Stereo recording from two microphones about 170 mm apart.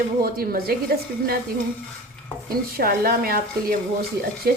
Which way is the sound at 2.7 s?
60° right (ahead or behind).